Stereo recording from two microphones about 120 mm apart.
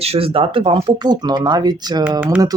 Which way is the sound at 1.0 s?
35° right (ahead or behind).